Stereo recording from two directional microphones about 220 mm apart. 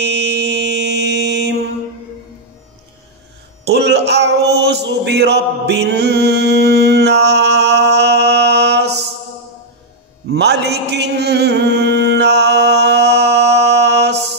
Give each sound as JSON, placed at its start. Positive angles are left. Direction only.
{"t": 0.0, "sound": "mantra", "side_deg": -50}
{"t": 3.6, "sound": "male singing", "side_deg": -50}
{"t": 10.3, "sound": "mantra", "side_deg": -50}